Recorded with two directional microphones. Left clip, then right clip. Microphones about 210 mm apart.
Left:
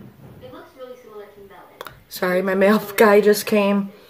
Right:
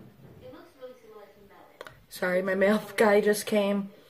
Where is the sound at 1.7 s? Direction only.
10° left (ahead or behind).